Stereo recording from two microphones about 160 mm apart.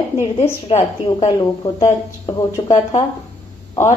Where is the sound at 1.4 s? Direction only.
20° left (ahead or behind).